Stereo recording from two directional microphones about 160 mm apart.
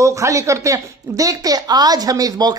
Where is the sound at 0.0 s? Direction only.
20° right (ahead or behind).